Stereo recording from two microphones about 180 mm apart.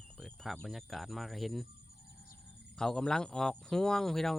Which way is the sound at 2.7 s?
5° left (ahead or behind).